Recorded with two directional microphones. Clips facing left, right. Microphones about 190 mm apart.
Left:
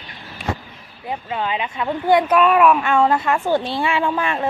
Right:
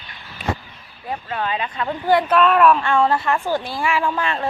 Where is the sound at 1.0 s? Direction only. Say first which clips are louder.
Left 1 dB; 15° left (ahead or behind).